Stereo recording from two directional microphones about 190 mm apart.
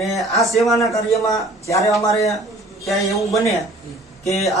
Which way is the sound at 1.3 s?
15° left (ahead or behind).